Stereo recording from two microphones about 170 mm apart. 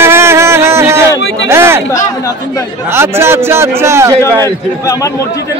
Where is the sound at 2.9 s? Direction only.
15° right (ahead or behind).